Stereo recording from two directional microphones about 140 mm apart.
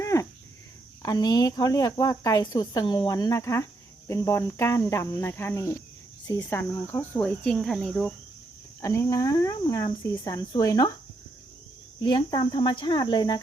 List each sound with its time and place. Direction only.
0.0 s cricket: 20° left (ahead or behind)
1.0 s speech: 30° left (ahead or behind); by 8.1 s 5° left (ahead or behind)
8.8 s speech: 20° left (ahead or behind)
12.0 s speech: 30° left (ahead or behind)